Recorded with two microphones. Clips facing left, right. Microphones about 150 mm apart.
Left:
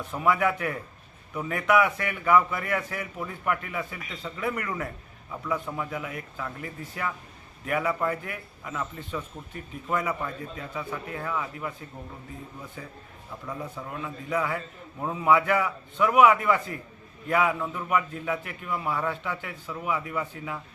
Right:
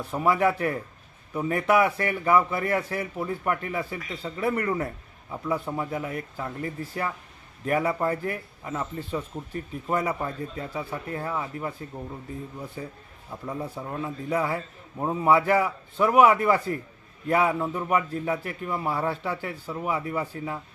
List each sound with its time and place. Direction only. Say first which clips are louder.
0.0 s a man's voice: right 2 dB; 30° right (ahead or behind)
13.3 s a man's voice: right 3 dB; 35° right (ahead or behind)